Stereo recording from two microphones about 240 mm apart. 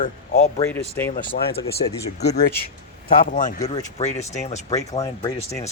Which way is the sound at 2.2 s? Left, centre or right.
Left.